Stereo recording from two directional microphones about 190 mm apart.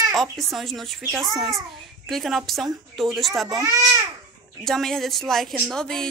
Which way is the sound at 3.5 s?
20° right (ahead or behind).